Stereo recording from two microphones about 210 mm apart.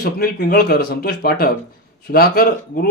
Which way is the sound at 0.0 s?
45° left (ahead or behind).